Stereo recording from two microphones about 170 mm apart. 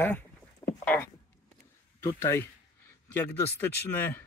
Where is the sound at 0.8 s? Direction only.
10° left (ahead or behind).